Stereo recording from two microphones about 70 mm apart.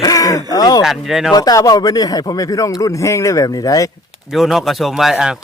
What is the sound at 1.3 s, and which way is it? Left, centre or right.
Speech, left.